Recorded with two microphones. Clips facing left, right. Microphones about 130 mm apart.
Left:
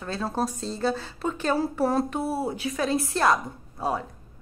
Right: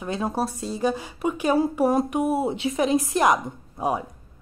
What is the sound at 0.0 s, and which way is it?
A woman's voice, 15° right (ahead or behind).